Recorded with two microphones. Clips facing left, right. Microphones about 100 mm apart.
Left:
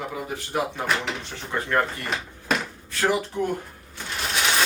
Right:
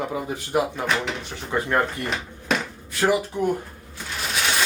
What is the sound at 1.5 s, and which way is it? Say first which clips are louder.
Speech: right 2 dB; 15° right (ahead or behind).